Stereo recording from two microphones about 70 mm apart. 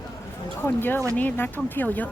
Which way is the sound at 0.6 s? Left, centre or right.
Left.